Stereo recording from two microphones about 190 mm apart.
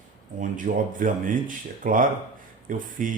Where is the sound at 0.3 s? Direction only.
45° right (ahead or behind).